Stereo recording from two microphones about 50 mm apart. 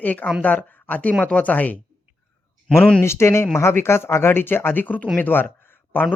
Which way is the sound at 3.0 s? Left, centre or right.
Left.